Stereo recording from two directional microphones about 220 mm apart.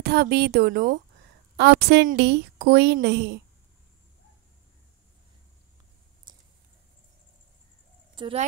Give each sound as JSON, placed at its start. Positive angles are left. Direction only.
{"t": 0.0, "sound": "a woman's voice", "side_deg": -45}
{"t": 6.3, "sound": "a sound", "side_deg": -20}
{"t": 8.1, "sound": "speech", "side_deg": -25}